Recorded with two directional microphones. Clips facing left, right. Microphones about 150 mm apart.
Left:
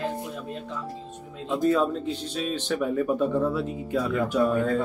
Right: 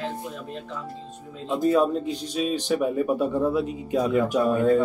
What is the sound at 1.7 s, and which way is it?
Speech, 15° right (ahead or behind).